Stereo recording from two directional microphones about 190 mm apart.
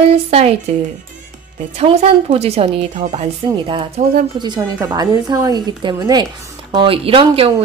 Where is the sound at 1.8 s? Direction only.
35° right (ahead or behind).